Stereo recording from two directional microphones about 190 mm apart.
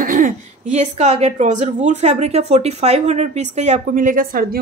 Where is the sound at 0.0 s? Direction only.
45° right (ahead or behind).